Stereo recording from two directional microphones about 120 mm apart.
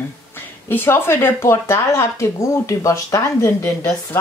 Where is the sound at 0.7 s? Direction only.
20° left (ahead or behind).